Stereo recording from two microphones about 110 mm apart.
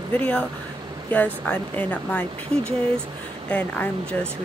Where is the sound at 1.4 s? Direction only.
10° left (ahead or behind).